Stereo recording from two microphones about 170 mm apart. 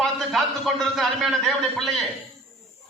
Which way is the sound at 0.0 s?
Centre (ahead or behind).